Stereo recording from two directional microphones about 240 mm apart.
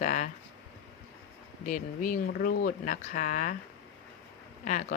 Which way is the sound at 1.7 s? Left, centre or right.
Left.